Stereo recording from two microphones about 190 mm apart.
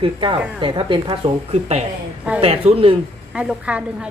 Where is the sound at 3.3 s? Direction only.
5° right (ahead or behind).